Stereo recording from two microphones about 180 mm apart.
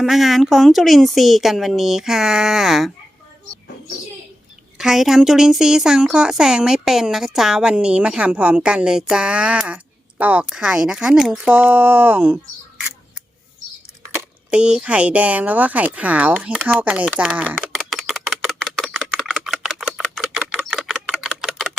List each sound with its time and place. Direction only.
0.0 s speech: centre (ahead or behind)
4.8 s speech: centre (ahead or behind)
14.1 s a sound: 10° right (ahead or behind)